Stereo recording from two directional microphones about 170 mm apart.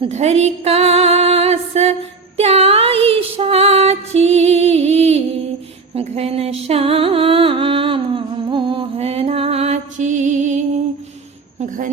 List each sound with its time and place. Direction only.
0.0 s music: 40° right (ahead or behind)